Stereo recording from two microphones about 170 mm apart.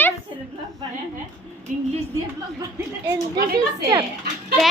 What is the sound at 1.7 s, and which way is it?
Speech, 50° right (ahead or behind).